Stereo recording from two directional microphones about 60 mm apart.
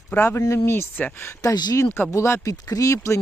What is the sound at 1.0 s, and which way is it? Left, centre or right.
Speech, left.